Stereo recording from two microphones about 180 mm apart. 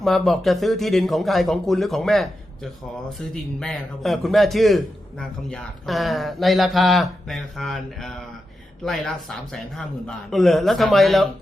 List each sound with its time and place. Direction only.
0.0 s speech: centre (ahead or behind)
3.6 s speech: centre (ahead or behind)